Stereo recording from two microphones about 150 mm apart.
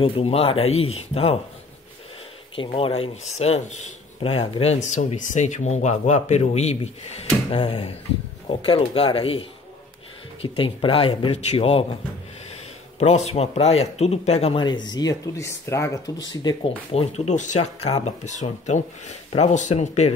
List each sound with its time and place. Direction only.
0.0 s speech: 40° left (ahead or behind)
2.5 s speech: 35° left (ahead or behind)
13.0 s speech: 45° left (ahead or behind); by 16.0 s 20° left (ahead or behind)
16.5 s speech: 30° left (ahead or behind)
16.9 s speech: 50° left (ahead or behind)